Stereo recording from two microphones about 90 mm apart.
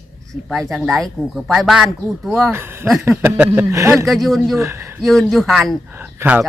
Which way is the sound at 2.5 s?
25° right (ahead or behind).